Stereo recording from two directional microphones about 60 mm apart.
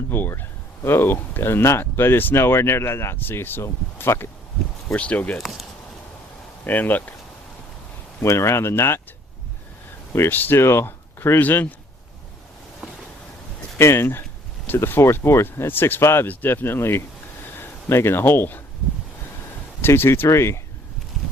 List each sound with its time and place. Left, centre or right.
0.1 s speech: left
4.9 s speech: left
5.4 s speech: centre
6.7 s speech: left
8.2 s speech: left
10.1 s speech: left
10.3 s speech: left
13.7 s speech: left
16.3 s speech: left
17.4 s a sound: left
19.8 s speech: left